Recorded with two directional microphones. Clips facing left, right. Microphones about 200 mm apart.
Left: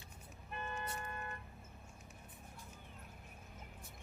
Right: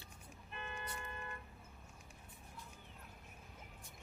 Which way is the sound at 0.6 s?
45° left (ahead or behind).